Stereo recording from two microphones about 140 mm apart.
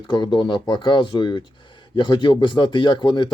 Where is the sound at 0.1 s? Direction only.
35° left (ahead or behind).